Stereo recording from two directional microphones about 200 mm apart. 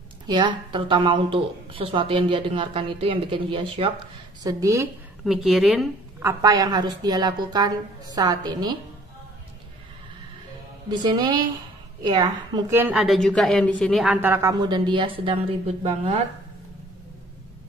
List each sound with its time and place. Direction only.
0.3 s speech: 25° right (ahead or behind)
5.2 s a woman's voice: centre (ahead or behind)
6.2 s speech: 20° right (ahead or behind)
10.9 s a woman's voice: 20° right (ahead or behind); by 14.0 s 5° left (ahead or behind)
14.0 s speech: 10° right (ahead or behind); by 16.2 s 30° right (ahead or behind)